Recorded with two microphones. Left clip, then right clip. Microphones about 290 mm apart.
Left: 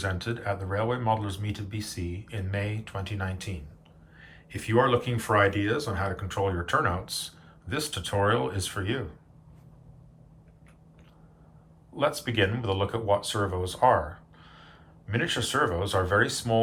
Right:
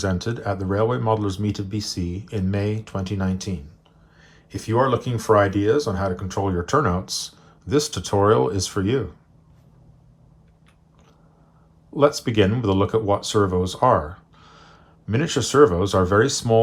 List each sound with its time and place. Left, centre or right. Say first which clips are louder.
0.0 s speech: right 6 dB; centre
11.9 s speech: right 8 dB; centre